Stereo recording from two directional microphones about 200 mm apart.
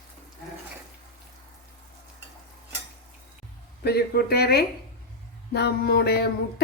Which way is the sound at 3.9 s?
55° left (ahead or behind).